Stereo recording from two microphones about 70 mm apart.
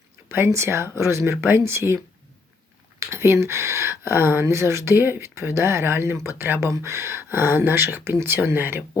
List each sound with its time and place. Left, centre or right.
0.3 s speech: right
3.1 s speech: right